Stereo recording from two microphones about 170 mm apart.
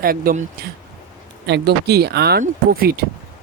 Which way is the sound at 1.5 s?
80° right.